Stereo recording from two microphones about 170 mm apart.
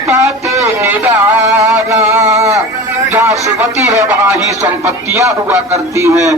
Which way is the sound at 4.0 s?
15° right (ahead or behind).